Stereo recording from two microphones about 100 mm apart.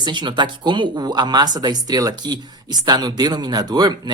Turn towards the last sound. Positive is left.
turn(degrees=-45)  # may be behind; listen again after turning